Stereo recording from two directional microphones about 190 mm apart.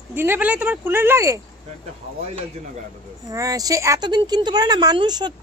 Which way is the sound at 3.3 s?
20° right (ahead or behind).